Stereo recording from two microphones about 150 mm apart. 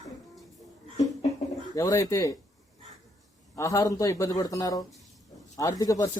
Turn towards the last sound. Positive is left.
turn(degrees=25)  # may be behind; listen again after turning